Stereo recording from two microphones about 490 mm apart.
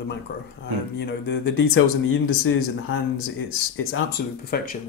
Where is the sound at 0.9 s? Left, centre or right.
Left.